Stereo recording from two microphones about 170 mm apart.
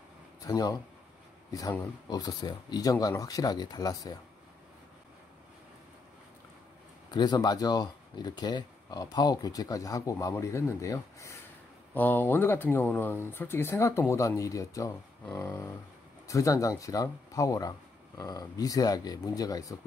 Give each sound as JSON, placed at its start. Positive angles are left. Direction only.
{"t": 0.4, "sound": "speech", "side_deg": 20}
{"t": 7.1, "sound": "speech", "side_deg": 25}